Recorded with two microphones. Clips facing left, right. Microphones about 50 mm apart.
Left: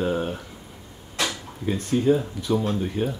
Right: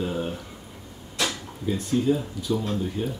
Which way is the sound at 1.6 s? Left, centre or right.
Left.